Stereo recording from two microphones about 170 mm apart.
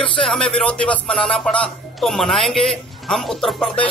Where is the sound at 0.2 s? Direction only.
5° left (ahead or behind).